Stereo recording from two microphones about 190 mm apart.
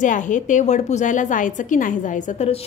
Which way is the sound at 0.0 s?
40° left (ahead or behind).